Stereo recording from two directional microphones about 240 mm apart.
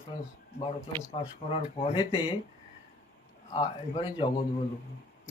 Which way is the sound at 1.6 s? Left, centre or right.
Left.